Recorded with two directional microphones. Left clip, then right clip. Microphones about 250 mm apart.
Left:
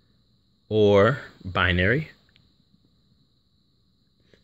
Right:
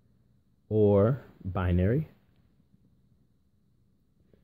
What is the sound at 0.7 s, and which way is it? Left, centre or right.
Speech, centre.